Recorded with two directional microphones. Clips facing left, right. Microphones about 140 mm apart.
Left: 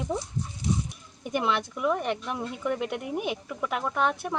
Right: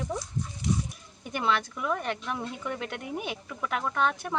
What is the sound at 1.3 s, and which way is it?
Speech, 15° left (ahead or behind).